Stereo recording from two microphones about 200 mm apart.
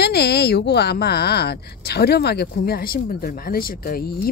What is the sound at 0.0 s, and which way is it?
A woman's voice, 55° left (ahead or behind).